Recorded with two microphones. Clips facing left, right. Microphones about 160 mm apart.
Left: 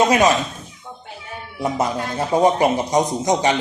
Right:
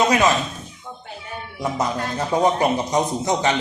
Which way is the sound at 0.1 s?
15° left (ahead or behind).